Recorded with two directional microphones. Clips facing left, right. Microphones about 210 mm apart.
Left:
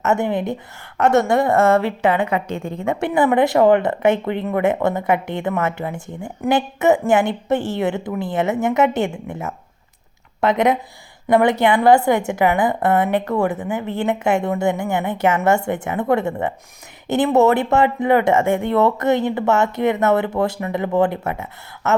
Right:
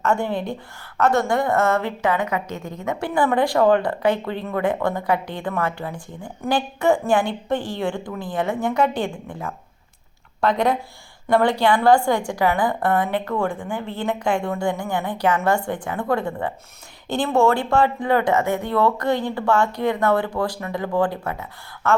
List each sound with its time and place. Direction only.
0.0 s a woman's voice: 20° left (ahead or behind)